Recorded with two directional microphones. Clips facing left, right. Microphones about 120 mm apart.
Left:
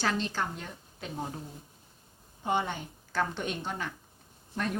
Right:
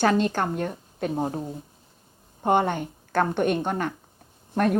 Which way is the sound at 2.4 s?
55° right (ahead or behind).